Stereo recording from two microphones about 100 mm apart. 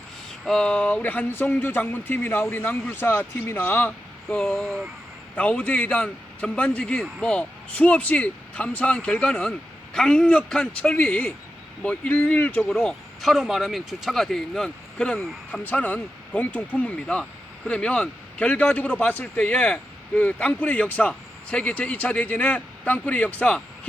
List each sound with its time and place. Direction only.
0.3 s speech: 5° left (ahead or behind); by 3.9 s 20° left (ahead or behind)
4.5 s speech: centre (ahead or behind)
5.4 s a man's voice: 15° left (ahead or behind)
12.7 s speech: 5° left (ahead or behind)
15.6 s a man's voice: 15° left (ahead or behind)